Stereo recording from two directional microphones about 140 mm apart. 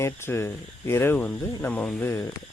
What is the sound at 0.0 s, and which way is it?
Speech, 20° left (ahead or behind).